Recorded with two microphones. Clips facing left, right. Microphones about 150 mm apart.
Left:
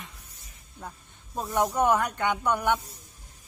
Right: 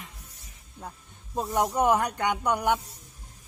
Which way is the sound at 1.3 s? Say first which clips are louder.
Even; 15° right (ahead or behind).